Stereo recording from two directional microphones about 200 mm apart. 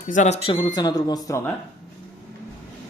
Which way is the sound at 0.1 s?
35° left (ahead or behind).